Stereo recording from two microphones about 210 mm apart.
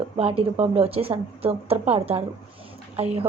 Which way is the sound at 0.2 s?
25° right (ahead or behind).